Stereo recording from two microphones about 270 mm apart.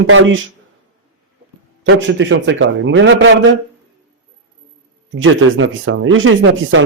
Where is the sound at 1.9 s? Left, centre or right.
Right.